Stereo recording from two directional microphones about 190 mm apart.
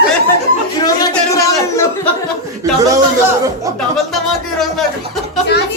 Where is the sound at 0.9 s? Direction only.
20° left (ahead or behind).